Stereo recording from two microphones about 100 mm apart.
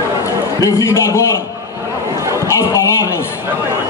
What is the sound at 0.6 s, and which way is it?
Speech, 35° left (ahead or behind).